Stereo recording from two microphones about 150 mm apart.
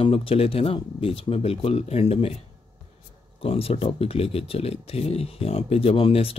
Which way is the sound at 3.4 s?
40° left (ahead or behind).